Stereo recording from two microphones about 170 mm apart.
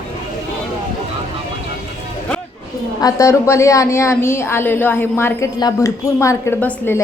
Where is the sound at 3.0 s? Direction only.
20° left (ahead or behind).